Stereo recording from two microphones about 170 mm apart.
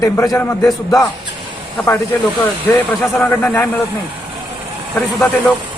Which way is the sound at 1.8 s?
10° left (ahead or behind).